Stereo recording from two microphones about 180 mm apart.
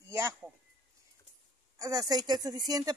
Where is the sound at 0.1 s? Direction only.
15° right (ahead or behind).